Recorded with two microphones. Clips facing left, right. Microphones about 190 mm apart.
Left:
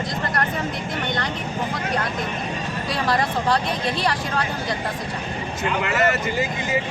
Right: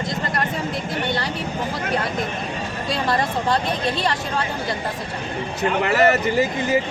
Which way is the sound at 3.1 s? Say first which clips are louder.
Left 1 dB; centre (ahead or behind).